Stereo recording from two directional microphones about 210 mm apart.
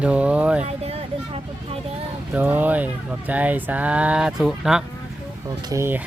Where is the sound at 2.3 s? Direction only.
10° right (ahead or behind).